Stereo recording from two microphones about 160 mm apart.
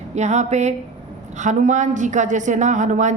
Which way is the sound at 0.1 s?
45° right (ahead or behind).